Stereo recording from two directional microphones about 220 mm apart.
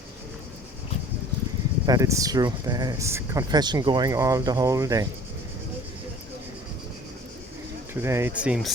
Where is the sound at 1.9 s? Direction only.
15° right (ahead or behind).